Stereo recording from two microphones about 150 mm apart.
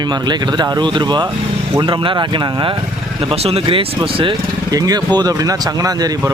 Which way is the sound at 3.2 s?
40° right (ahead or behind).